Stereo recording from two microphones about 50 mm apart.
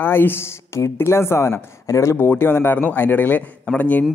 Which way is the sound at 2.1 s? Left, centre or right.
Left.